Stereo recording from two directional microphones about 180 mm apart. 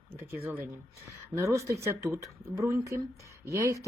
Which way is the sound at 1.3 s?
15° right (ahead or behind).